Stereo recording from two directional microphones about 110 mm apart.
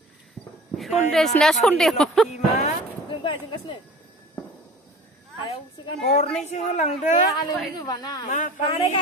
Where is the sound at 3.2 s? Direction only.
50° left (ahead or behind).